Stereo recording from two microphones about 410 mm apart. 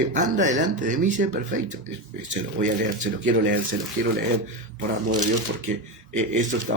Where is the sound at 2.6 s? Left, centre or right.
Centre.